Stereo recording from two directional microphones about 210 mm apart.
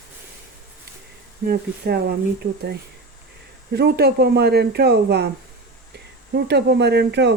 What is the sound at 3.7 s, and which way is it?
Speech, 50° right (ahead or behind).